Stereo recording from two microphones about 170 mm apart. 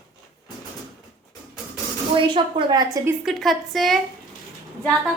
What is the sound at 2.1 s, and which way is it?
A woman's voice, 30° right (ahead or behind).